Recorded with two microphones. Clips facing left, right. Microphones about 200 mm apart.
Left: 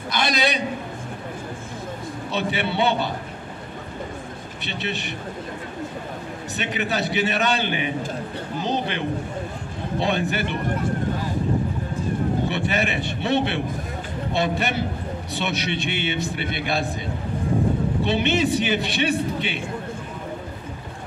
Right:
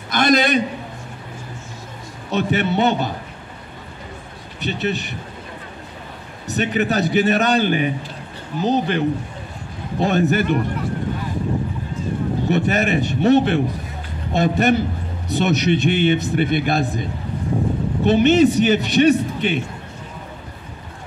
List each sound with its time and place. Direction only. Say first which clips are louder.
0.1 s a man's voice: right 7 dB; 50° right (ahead or behind)
2.3 s a man's voice: right 5 dB; 45° right (ahead or behind)
4.6 s a man's voice: right 7 dB; 40° right (ahead or behind)
6.5 s a man's voice: right 7 dB; 40° right (ahead or behind)
12.4 s a man's voice: right 5 dB; 45° right (ahead or behind)
18.0 s a man's voice: right 9 dB; 45° right (ahead or behind)